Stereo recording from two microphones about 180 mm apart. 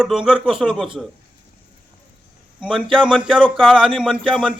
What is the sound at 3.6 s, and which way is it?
A man's voice, 5° left (ahead or behind).